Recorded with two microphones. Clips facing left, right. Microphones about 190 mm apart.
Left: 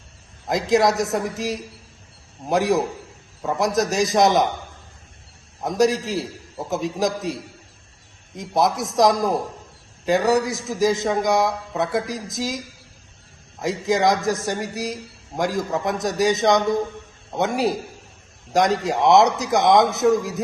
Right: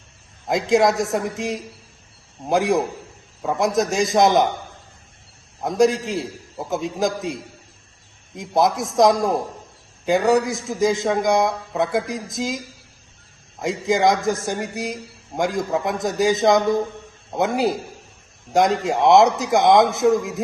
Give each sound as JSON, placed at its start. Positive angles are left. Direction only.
{"t": 0.4, "sound": "a man's voice", "side_deg": 0}
{"t": 5.6, "sound": "a man's voice", "side_deg": 0}
{"t": 13.6, "sound": "a man's voice", "side_deg": 0}